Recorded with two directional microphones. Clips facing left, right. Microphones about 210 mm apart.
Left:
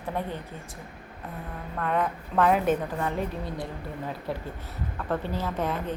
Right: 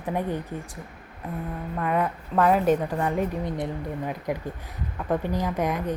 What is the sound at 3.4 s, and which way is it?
A woman's voice, 15° right (ahead or behind).